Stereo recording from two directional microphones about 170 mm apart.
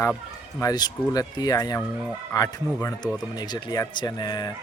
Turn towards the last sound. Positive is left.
turn(degrees=25)  # may be behind; listen again after turning